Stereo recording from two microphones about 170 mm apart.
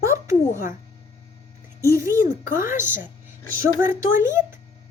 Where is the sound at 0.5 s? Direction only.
50° left (ahead or behind).